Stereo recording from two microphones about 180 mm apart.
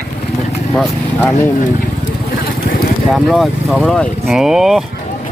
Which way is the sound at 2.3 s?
55° left (ahead or behind).